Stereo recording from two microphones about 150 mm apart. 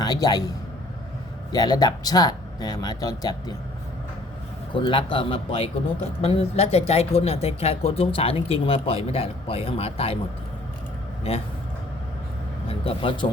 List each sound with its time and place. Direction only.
0.0 s speech: 25° left (ahead or behind)
1.5 s speech: 25° left (ahead or behind)
4.7 s speech: 35° left (ahead or behind)
11.2 s speech: 40° left (ahead or behind)
12.6 s speech: 40° left (ahead or behind)